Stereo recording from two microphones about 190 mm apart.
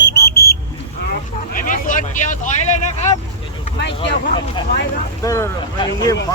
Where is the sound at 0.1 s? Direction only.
55° left (ahead or behind).